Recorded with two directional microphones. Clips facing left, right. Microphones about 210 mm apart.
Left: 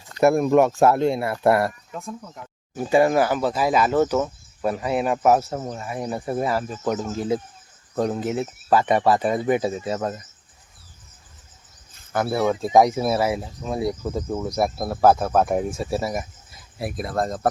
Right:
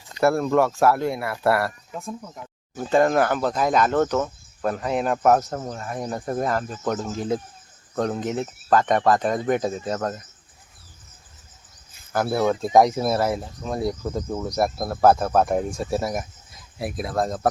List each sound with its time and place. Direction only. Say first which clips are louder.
0.2 s speech: left 3 dB; 15° left (ahead or behind)
2.2 s speech: right 1 dB; 5° right (ahead or behind)
2.7 s speech: left 1 dB; 10° left (ahead or behind)
12.1 s speech: even; centre (ahead or behind)